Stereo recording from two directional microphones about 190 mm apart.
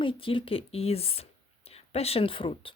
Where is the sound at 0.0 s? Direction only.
30° left (ahead or behind).